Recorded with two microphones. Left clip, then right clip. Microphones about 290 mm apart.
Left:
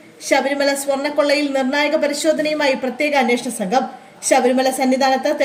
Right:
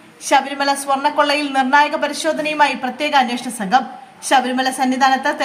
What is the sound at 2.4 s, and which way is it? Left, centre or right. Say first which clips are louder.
Speech: right 2 dB; right.